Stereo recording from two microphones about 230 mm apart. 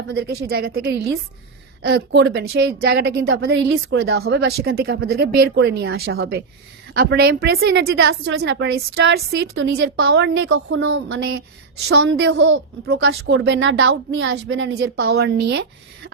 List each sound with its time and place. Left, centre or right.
0.1 s a woman's voice: right
4.2 s a woman's voice: right
9.6 s a woman's voice: right